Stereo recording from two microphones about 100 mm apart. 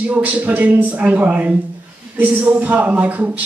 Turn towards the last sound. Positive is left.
turn(degrees=-15)  # may be behind; listen again after turning